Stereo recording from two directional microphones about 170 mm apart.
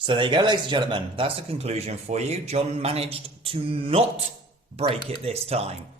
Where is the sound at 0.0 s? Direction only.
30° right (ahead or behind).